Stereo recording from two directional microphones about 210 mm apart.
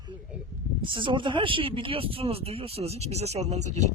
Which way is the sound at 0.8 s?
25° right (ahead or behind).